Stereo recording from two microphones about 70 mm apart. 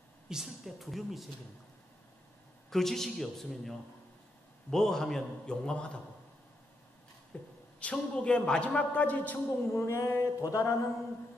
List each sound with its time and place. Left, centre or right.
0.3 s a woman's voice: centre
2.7 s a woman's voice: centre
7.3 s a man's voice: centre
9.8 s a sound: left